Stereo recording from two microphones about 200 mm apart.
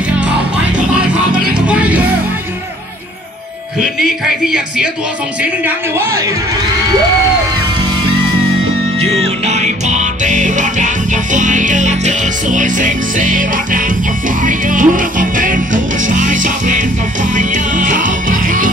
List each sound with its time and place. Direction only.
0.7 s music: 5° right (ahead or behind)
3.8 s speech: centre (ahead or behind)
9.0 s music: 30° right (ahead or behind)